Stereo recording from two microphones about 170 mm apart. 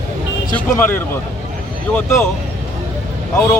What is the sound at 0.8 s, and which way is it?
Speech, 15° left (ahead or behind).